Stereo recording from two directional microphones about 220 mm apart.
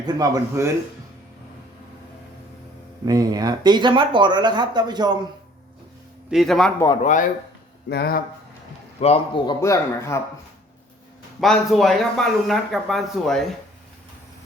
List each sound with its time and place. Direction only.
0.0 s speech: 15° right (ahead or behind)
3.1 s speech: 15° right (ahead or behind)
6.3 s speech: centre (ahead or behind)
7.0 s speech: 35° left (ahead or behind)
7.9 s speech: 45° left (ahead or behind)
9.0 s a man's voice: 25° left (ahead or behind)
9.6 s speech: 15° left (ahead or behind)
11.3 s speech: centre (ahead or behind)